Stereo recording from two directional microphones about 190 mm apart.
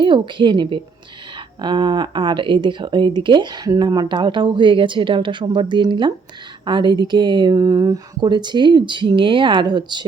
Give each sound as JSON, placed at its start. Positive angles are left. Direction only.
{"t": 0.0, "sound": "speech", "side_deg": -25}